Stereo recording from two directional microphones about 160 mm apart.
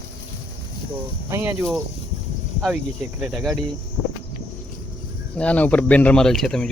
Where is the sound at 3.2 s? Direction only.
5° right (ahead or behind).